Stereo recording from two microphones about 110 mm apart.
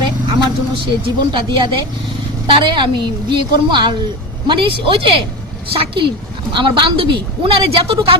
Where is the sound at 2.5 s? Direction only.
50° right (ahead or behind).